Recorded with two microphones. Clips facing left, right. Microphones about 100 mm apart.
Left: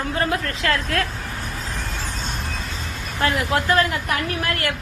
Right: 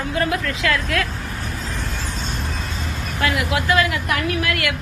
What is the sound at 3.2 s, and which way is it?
A woman's voice, 40° left (ahead or behind).